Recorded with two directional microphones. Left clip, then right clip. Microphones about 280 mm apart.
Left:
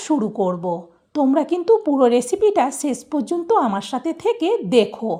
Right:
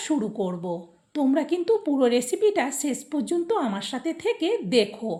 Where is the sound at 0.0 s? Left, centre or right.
Centre.